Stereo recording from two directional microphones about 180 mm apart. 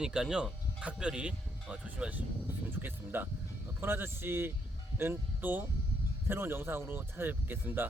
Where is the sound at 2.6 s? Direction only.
10° right (ahead or behind).